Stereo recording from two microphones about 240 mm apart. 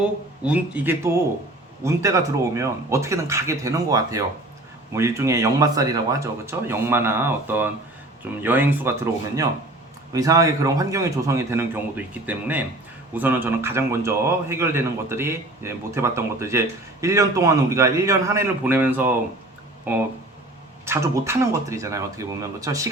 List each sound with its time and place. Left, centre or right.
0.0 s a man's voice: centre
10.1 s a man's voice: centre
20.8 s a man's voice: centre